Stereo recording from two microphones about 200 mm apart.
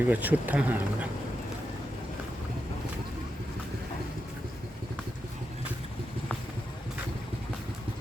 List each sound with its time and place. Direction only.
0.0 s speech: 10° right (ahead or behind)